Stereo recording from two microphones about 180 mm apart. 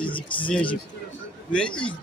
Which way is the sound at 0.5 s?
5° left (ahead or behind).